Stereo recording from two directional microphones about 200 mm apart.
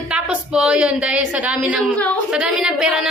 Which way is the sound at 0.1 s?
5° right (ahead or behind).